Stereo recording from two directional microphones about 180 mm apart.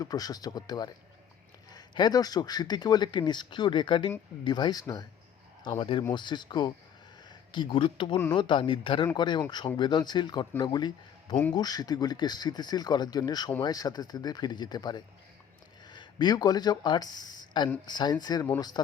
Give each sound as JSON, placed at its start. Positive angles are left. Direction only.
{"t": 0.0, "sound": "speech", "side_deg": 20}